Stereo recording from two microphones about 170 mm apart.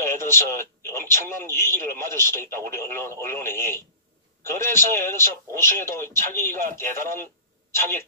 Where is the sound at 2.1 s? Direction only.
15° left (ahead or behind).